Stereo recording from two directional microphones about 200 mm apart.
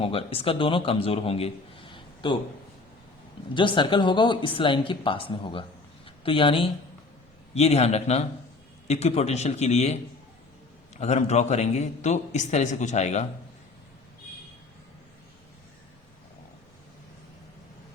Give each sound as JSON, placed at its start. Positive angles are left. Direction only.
{"t": 0.0, "sound": "a man's voice", "side_deg": 30}
{"t": 3.5, "sound": "a man's voice", "side_deg": 25}